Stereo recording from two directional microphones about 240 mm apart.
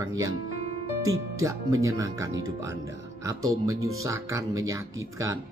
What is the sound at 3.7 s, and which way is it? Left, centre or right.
Speech, right.